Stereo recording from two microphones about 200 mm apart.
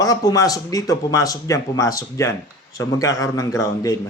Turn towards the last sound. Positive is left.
turn(degrees=15)  # may be behind; listen again after turning